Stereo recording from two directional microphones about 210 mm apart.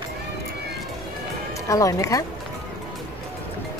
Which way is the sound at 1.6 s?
15° left (ahead or behind).